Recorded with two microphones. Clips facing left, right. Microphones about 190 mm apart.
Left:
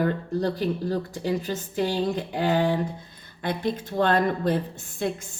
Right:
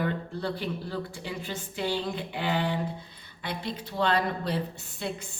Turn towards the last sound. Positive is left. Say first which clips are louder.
# left 6 dB
turn(degrees=45)  # may be behind; listen again after turning